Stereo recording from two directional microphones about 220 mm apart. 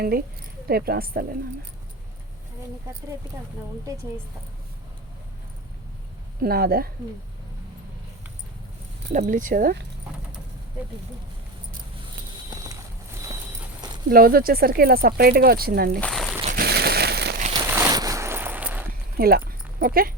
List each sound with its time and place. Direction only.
0.0 s speech: 45° right (ahead or behind)
6.4 s speech: 45° right (ahead or behind)
9.1 s speech: 35° right (ahead or behind)
14.1 s speech: 40° right (ahead or behind)
16.0 s speech: 5° left (ahead or behind)
16.5 s crumpling: 45° right (ahead or behind)
17.5 s a sound: 15° right (ahead or behind)
19.1 s speech: 45° right (ahead or behind)